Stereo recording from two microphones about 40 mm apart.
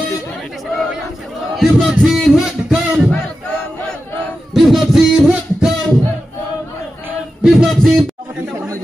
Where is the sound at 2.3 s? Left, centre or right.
Centre.